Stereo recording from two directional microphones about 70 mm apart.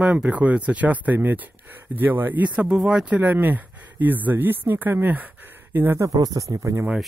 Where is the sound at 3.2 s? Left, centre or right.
Right.